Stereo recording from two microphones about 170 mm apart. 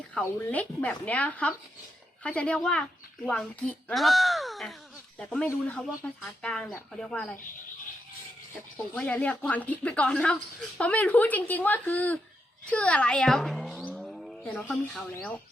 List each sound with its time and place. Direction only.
0.1 s speech: 10° left (ahead or behind)
8.5 s speech: 10° left (ahead or behind)